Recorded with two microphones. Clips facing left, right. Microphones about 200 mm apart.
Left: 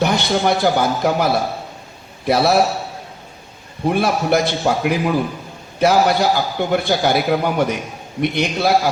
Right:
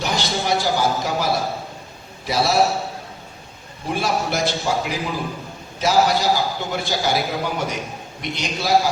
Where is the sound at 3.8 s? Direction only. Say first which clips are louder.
Left 6 dB; 55° left (ahead or behind).